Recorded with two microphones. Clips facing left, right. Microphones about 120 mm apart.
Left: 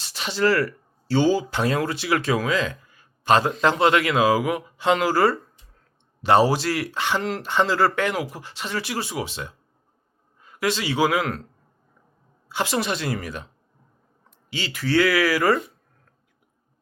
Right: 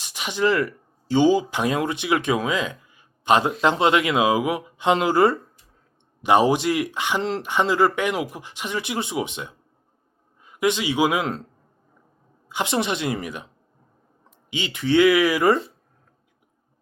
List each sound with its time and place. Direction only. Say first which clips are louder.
0.0 s speech: even; 15° right (ahead or behind)
7.2 s speech: right 2 dB; 25° right (ahead or behind)
7.4 s a man's voice: right 1 dB; 15° right (ahead or behind)
12.5 s speech: right 1 dB; 20° right (ahead or behind)
14.5 s speech: right 2 dB; 20° right (ahead or behind)